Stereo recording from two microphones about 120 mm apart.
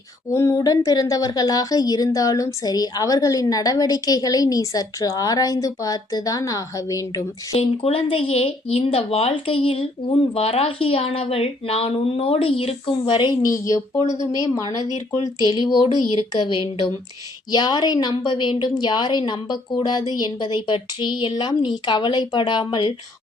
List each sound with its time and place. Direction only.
0.3 s a woman's voice: 25° left (ahead or behind)
7.5 s speech: 55° left (ahead or behind); by 13.5 s 40° left (ahead or behind)
14.2 s a woman's voice: 30° left (ahead or behind)
14.8 s speech: 70° left (ahead or behind)
15.4 s a woman's voice: 40° left (ahead or behind)